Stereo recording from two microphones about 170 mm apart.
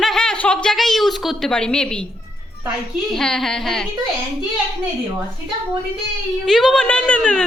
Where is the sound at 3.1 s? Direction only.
Centre (ahead or behind).